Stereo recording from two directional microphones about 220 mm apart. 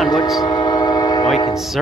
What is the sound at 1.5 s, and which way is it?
Speech, centre (ahead or behind).